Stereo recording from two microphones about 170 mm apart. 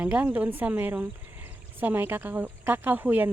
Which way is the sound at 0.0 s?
10° right (ahead or behind).